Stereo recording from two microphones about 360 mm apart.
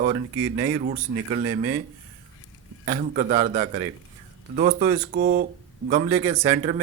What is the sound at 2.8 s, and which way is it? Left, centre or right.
Speech, right.